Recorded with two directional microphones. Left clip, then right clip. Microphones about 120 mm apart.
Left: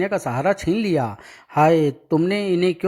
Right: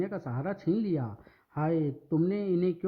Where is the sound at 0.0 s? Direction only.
50° left (ahead or behind).